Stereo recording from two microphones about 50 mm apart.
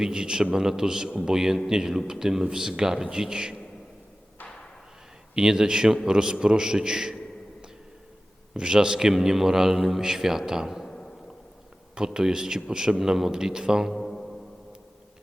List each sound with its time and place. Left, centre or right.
0.0 s a man's voice: centre
5.3 s a man's voice: centre
8.5 s a man's voice: centre
10.8 s a sound: centre
11.9 s a man's voice: centre
13.9 s music: centre